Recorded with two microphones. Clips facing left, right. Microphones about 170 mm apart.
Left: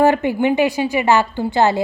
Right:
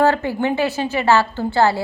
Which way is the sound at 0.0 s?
15° left (ahead or behind).